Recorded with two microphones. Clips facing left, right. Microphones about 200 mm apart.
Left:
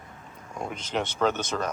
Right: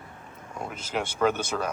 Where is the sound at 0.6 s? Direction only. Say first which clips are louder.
Left 1 dB; 5° right (ahead or behind).